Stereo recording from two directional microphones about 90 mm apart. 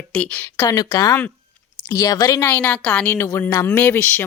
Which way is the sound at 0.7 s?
40° left (ahead or behind).